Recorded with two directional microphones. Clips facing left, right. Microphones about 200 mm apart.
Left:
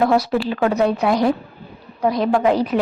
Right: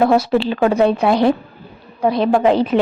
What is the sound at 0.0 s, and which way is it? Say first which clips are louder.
A woman's voice: right 3 dB; 25° right (ahead or behind).